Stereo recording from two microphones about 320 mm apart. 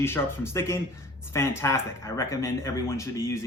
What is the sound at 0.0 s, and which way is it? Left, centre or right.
Speech, centre.